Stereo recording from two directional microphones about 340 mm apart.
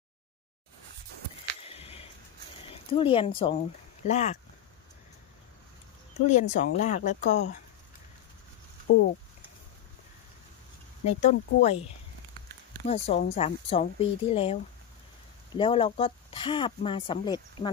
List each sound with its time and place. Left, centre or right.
1.7 s a sound: centre
2.7 s speech: centre
6.2 s speech: centre
8.9 s speech: centre
11.1 s speech: centre
12.8 s speech: centre